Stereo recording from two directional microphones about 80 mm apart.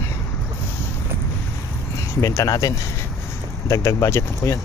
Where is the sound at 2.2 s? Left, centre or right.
Left.